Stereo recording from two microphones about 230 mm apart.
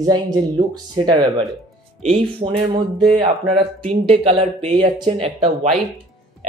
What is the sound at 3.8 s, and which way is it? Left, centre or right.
Speech, right.